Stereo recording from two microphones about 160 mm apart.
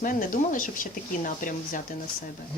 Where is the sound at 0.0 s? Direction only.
55° left (ahead or behind).